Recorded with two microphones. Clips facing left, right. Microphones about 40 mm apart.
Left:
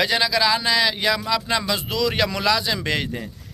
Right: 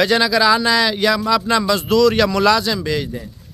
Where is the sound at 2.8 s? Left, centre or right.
Left.